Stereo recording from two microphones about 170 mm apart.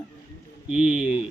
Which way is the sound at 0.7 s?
5° right (ahead or behind).